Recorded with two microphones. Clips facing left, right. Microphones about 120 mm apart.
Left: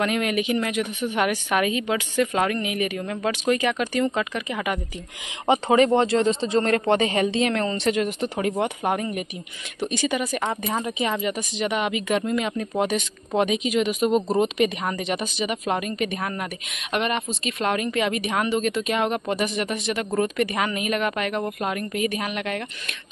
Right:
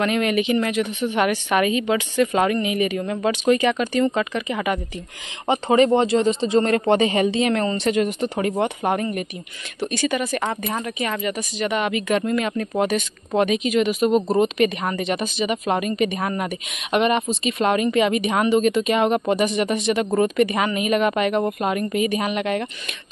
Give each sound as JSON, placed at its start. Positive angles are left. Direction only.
{"t": 0.0, "sound": "speech", "side_deg": 5}
{"t": 9.8, "sound": "speech", "side_deg": 15}
{"t": 14.1, "sound": "a woman's voice", "side_deg": -15}
{"t": 14.4, "sound": "a woman's voice", "side_deg": 5}